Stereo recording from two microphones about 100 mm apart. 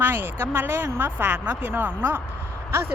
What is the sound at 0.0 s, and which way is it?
Speech, 20° right (ahead or behind).